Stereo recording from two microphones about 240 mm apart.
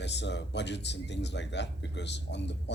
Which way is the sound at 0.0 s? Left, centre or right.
Left.